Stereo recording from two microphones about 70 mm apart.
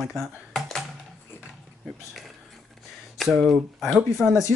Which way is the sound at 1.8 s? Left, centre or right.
Centre.